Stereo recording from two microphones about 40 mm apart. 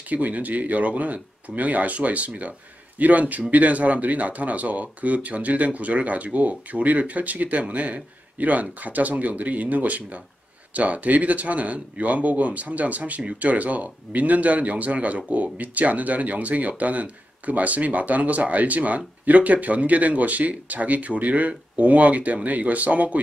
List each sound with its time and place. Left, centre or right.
0.1 s speech: right